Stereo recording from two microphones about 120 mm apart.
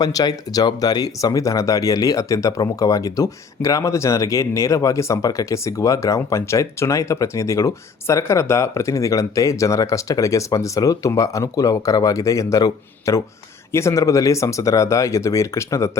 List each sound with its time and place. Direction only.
0.0 s speech: 30° left (ahead or behind)